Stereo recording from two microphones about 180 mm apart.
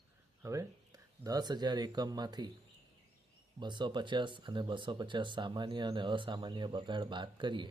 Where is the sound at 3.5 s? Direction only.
25° right (ahead or behind).